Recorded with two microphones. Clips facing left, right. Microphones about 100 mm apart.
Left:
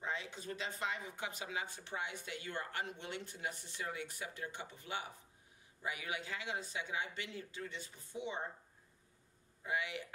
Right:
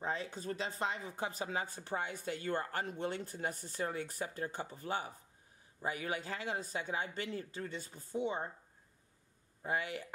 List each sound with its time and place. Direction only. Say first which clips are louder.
0.0 s speech: right 4 dB; 40° right (ahead or behind)
9.6 s speech: right 2 dB; 40° right (ahead or behind)